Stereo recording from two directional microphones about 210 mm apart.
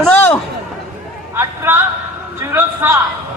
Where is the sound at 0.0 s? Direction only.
5° left (ahead or behind).